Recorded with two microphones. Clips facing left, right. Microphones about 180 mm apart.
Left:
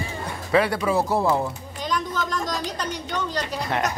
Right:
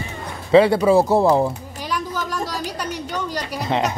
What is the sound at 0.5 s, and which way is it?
Speech, 25° right (ahead or behind).